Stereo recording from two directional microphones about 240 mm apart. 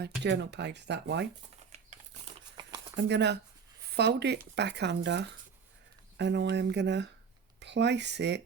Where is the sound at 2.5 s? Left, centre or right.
Centre.